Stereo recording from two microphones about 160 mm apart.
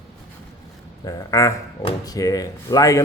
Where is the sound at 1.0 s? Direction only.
20° left (ahead or behind).